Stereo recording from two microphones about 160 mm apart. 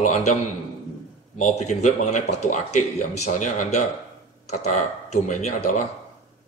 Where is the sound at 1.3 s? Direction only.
50° left (ahead or behind).